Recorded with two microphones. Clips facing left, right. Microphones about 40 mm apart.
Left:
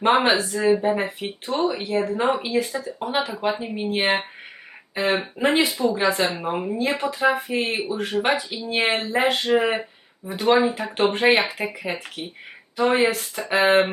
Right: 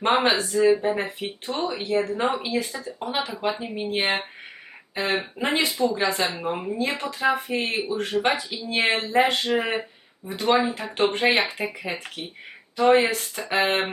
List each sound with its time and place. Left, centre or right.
0.0 s a woman's voice: centre
0.5 s speech: centre
0.8 s a woman's voice: centre